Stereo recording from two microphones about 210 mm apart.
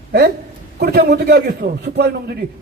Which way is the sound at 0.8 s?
50° right (ahead or behind).